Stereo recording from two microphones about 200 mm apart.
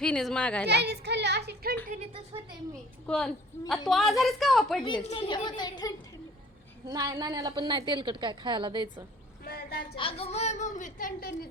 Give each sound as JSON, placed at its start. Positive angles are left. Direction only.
{"t": 0.0, "sound": "a child's voice", "side_deg": 5}
{"t": 0.7, "sound": "child singing", "side_deg": -55}
{"t": 1.9, "sound": "a sound", "side_deg": -30}
{"t": 3.1, "sound": "a child's voice", "side_deg": 5}
{"t": 5.0, "sound": "a woman's voice", "side_deg": 25}
{"t": 6.8, "sound": "a woman's voice", "side_deg": -15}
{"t": 9.4, "sound": "speech", "side_deg": 50}
{"t": 9.9, "sound": "a woman's voice", "side_deg": 25}